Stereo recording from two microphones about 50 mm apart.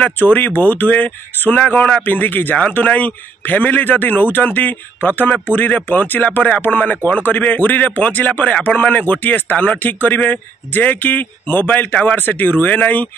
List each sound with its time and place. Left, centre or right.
0.2 s a man's voice: left